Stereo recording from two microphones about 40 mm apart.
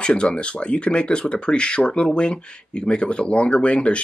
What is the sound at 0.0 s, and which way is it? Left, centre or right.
Speech, left.